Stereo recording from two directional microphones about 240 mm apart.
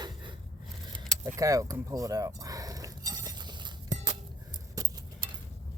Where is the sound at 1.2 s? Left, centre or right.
Centre.